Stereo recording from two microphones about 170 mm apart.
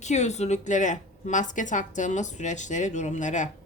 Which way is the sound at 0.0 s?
40° left (ahead or behind).